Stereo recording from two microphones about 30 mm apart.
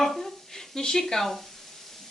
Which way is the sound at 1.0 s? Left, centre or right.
Centre.